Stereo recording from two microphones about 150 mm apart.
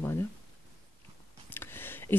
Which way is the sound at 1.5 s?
15° left (ahead or behind).